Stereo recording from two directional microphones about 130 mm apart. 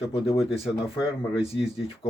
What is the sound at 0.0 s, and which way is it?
Speech, 50° left (ahead or behind).